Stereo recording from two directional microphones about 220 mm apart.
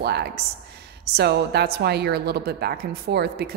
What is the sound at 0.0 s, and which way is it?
A woman's voice, 50° right (ahead or behind).